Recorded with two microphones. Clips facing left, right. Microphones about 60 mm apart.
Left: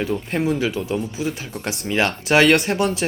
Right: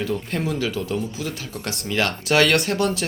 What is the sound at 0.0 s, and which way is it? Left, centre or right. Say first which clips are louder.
Speech: left 3 dB; left.